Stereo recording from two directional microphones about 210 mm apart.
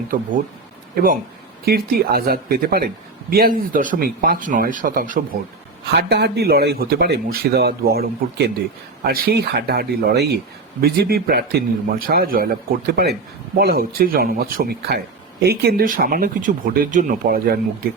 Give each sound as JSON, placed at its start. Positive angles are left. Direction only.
{"t": 0.9, "sound": "speech", "side_deg": -40}
{"t": 5.9, "sound": "speech", "side_deg": -50}